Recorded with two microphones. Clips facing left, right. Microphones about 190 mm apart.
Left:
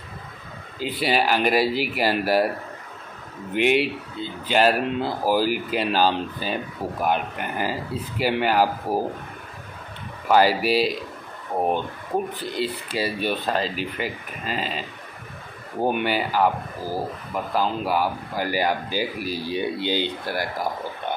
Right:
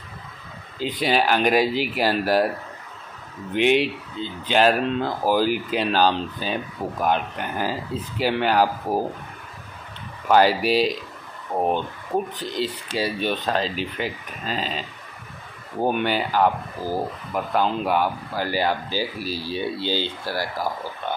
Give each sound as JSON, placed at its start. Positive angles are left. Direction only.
{"t": 0.7, "sound": "speech", "side_deg": 10}
{"t": 3.5, "sound": "speech", "side_deg": 10}
{"t": 10.2, "sound": "speech", "side_deg": 5}
{"t": 15.8, "sound": "speech", "side_deg": 10}
{"t": 19.2, "sound": "speech", "side_deg": 55}